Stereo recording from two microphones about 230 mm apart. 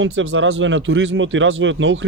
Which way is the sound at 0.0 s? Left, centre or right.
Right.